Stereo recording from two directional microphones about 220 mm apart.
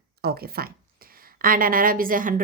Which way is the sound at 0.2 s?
45° right (ahead or behind).